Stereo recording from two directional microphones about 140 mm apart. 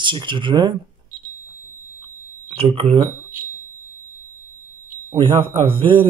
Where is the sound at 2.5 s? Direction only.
45° right (ahead or behind).